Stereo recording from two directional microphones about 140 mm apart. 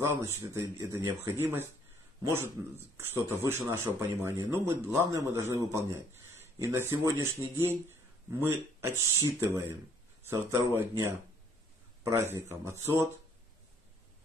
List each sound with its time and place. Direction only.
0.2 s speech: 20° right (ahead or behind)